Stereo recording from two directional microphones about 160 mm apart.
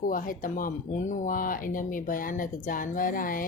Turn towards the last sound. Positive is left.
turn(degrees=60)  # may be behind; listen again after turning